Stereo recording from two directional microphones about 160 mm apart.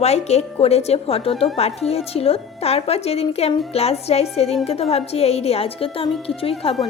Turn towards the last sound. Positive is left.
turn(degrees=35)  # may be behind; listen again after turning